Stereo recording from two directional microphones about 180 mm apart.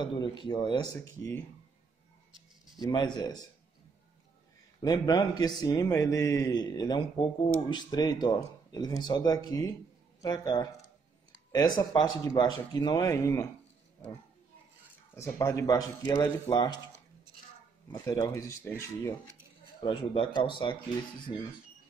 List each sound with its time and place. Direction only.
0.0 s a man's voice: 25° left (ahead or behind)
2.8 s a man's voice: 25° left (ahead or behind)
4.8 s a man's voice: 20° left (ahead or behind)
15.1 s a man's voice: 15° left (ahead or behind)
17.9 s speech: 20° left (ahead or behind)
19.8 s a man's voice: 30° left (ahead or behind)